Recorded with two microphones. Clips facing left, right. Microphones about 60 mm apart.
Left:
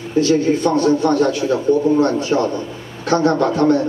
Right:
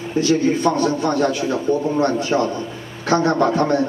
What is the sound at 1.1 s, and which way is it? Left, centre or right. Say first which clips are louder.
A man's voice: left 3 dB; right.